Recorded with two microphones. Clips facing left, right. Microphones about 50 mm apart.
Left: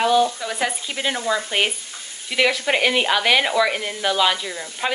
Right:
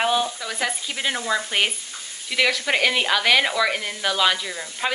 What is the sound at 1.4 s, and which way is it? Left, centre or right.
Frying, centre.